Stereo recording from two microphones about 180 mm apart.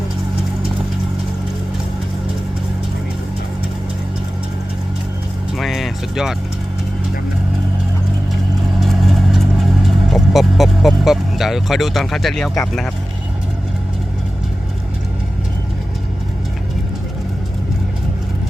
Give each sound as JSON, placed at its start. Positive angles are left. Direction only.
{"t": 5.5, "sound": "vehicle", "side_deg": 0}
{"t": 8.8, "sound": "vehicle", "side_deg": 0}